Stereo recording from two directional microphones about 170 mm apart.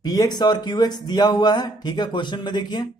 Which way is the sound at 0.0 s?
25° left (ahead or behind).